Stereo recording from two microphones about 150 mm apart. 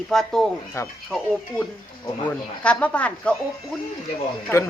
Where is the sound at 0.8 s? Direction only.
20° left (ahead or behind).